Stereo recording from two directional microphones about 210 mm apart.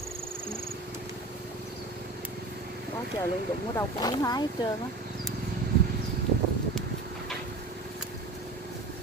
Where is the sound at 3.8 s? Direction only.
20° left (ahead or behind).